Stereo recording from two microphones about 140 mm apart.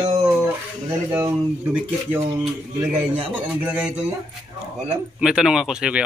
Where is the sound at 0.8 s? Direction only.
15° right (ahead or behind).